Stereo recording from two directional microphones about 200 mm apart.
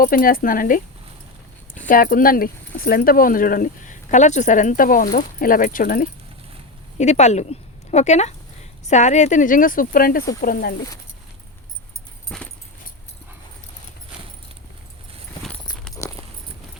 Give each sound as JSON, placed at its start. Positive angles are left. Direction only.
{"t": 0.0, "sound": "speech", "side_deg": 45}
{"t": 1.9, "sound": "speech", "side_deg": 45}
{"t": 12.3, "sound": "dog", "side_deg": 5}
{"t": 16.0, "sound": "a sound", "side_deg": 15}